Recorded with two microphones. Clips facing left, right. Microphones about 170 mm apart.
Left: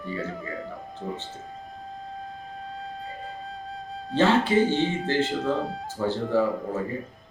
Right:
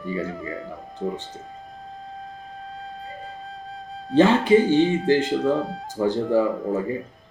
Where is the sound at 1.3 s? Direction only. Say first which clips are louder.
Even; centre (ahead or behind).